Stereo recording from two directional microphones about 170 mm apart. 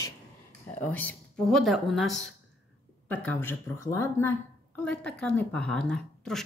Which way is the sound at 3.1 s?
10° left (ahead or behind).